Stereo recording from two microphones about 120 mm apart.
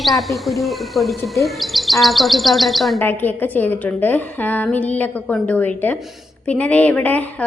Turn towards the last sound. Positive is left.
turn(degrees=15)  # may be behind; listen again after turning